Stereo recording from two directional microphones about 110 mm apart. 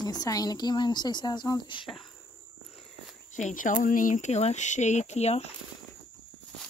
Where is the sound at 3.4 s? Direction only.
90° left; by 5.5 s 75° left (ahead or behind).